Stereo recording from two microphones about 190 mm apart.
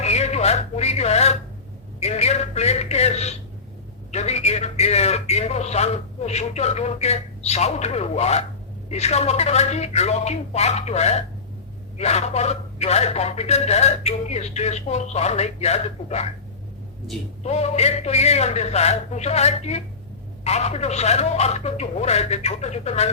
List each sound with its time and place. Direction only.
0.0 s a sound: 35° left (ahead or behind)
2.0 s a man's voice: 35° left (ahead or behind)
17.4 s a man's voice: 35° left (ahead or behind)